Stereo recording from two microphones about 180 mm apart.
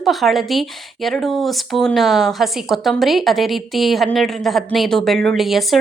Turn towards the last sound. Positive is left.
turn(degrees=0)  # may be behind; listen again after turning